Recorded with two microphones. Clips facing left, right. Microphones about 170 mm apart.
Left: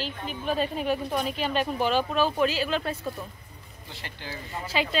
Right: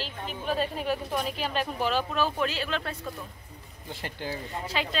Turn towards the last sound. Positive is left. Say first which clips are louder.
# left 3 dB
turn(degrees=5)  # may be behind; listen again after turning